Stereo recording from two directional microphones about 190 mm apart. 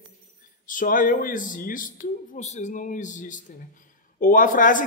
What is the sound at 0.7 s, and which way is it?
A man's voice, 45° left (ahead or behind).